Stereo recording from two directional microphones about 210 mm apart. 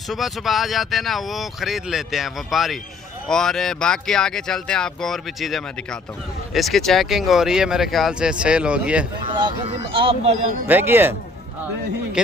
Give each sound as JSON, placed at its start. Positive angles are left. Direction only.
{"t": 0.1, "sound": "speech", "side_deg": 0}
{"t": 9.3, "sound": "speech", "side_deg": -20}
{"t": 10.7, "sound": "speech", "side_deg": -10}